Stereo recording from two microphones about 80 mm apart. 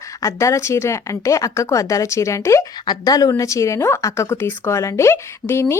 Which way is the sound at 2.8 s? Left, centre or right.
Left.